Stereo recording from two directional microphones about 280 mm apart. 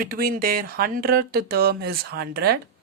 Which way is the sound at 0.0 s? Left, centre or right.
Right.